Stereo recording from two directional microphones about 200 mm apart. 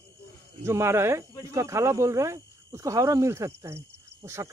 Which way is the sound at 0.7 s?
15° right (ahead or behind).